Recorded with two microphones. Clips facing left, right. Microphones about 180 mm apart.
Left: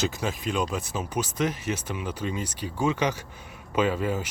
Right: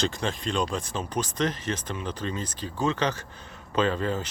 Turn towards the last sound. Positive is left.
turn(degrees=10)  # may be behind; listen again after turning